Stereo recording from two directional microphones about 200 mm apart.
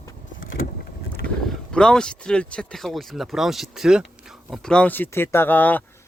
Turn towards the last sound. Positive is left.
turn(degrees=10)  # may be behind; listen again after turning